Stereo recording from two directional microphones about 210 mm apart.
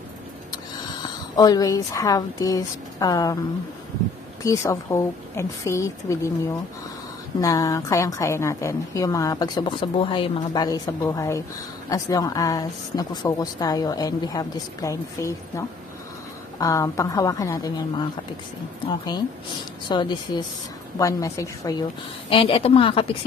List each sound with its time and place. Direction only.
1.0 s a woman's voice: 20° left (ahead or behind)
4.4 s a woman's voice: 15° left (ahead or behind)
19.9 s a woman's voice: 20° left (ahead or behind)